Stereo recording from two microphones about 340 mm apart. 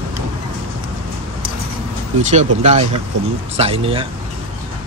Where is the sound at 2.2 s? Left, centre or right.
Centre.